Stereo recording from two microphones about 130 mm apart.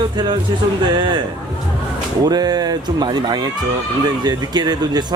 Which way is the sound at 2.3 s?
30° right (ahead or behind).